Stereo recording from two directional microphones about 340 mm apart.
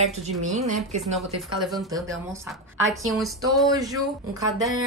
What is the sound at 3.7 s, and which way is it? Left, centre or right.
Speech, centre.